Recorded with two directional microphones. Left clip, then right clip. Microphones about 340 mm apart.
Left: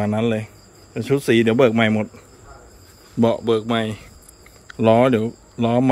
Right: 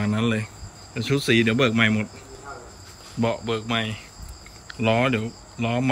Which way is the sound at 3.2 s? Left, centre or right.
Centre.